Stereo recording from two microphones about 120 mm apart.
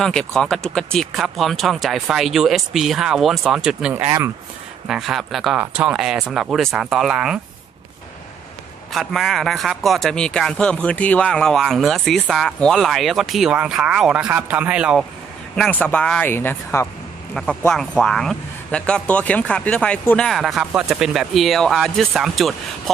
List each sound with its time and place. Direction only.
0.0 s a man's voice: 5° left (ahead or behind)
3.9 s speech: 20° right (ahead or behind)
4.9 s a man's voice: 5° right (ahead or behind)
8.9 s a man's voice: centre (ahead or behind)
15.7 s a man's voice: 10° left (ahead or behind)